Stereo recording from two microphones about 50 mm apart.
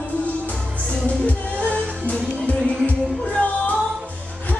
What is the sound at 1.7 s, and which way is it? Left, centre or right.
Music, left.